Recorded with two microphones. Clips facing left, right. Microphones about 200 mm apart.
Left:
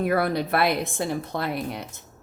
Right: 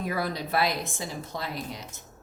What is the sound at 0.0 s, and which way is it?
A woman's voice, 60° left (ahead or behind).